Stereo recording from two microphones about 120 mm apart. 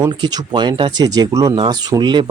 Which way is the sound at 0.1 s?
35° right (ahead or behind).